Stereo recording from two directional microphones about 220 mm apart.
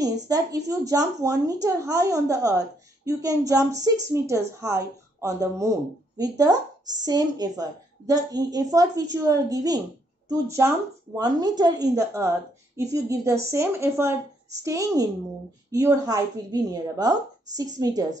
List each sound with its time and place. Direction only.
0.0 s speech: 15° right (ahead or behind)